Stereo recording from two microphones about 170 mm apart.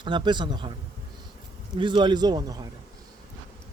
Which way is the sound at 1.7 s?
25° right (ahead or behind).